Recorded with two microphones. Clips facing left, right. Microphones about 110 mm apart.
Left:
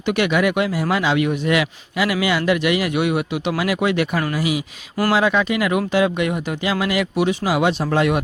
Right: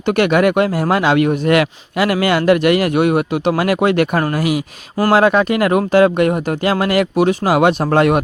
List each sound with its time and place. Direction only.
0.0 s speech: 45° right (ahead or behind)